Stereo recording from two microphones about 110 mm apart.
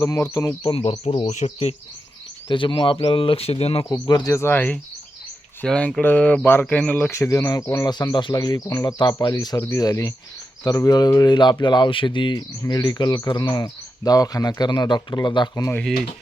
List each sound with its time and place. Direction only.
0.0 s speech: 30° left (ahead or behind)
0.7 s speech: 65° left (ahead or behind); by 1.7 s 85° left
2.5 s speech: 50° left (ahead or behind)
3.8 s speech: 40° left (ahead or behind)
4.3 s speech: 20° left (ahead or behind)
7.1 s speech: 30° left (ahead or behind)